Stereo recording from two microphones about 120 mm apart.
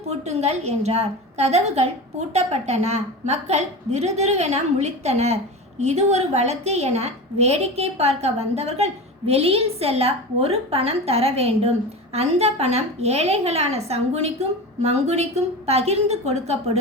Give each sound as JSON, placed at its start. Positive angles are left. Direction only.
{"t": 0.1, "sound": "a woman's voice", "side_deg": -65}